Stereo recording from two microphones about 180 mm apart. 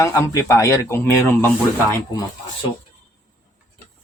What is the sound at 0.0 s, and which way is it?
A man's voice, 20° left (ahead or behind).